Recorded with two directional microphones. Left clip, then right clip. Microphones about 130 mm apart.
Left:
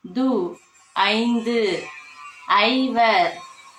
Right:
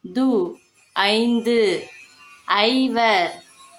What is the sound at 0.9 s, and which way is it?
A woman's voice, 30° right (ahead or behind).